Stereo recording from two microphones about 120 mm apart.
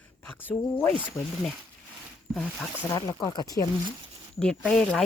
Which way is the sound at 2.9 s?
30° left (ahead or behind).